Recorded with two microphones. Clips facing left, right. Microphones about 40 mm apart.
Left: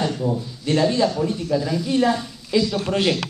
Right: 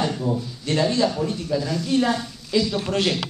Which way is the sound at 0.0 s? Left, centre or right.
Centre.